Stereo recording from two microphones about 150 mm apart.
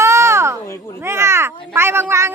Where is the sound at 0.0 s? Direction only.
20° right (ahead or behind).